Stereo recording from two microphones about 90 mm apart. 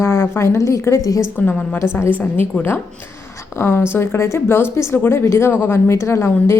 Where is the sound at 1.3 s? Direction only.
15° left (ahead or behind).